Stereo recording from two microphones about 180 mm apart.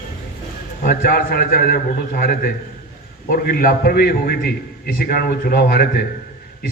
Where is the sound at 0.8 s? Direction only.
55° left (ahead or behind).